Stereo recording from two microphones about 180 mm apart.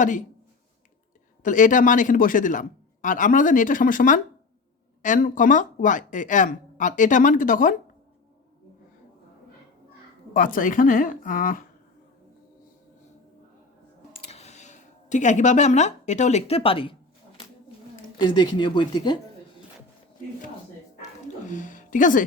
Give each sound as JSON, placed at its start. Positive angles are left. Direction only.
{"t": 1.4, "sound": "a man's voice", "side_deg": 45}
{"t": 10.3, "sound": "a man's voice", "side_deg": 50}
{"t": 14.3, "sound": "a sound", "side_deg": 35}
{"t": 18.2, "sound": "speech", "side_deg": 25}
{"t": 21.4, "sound": "music", "side_deg": 45}